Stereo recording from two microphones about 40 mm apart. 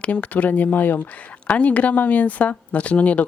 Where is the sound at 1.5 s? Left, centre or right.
Left.